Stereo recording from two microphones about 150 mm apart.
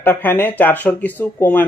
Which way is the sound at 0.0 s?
15° left (ahead or behind).